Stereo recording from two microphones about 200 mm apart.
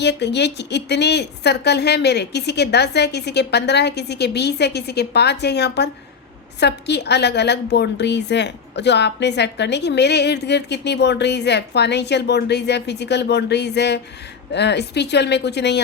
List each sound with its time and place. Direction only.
0.0 s a woman's voice: 60° left (ahead or behind)